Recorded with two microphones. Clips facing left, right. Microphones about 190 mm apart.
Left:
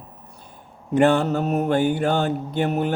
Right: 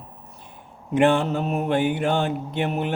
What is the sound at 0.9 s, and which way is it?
Mantra, 40° left (ahead or behind).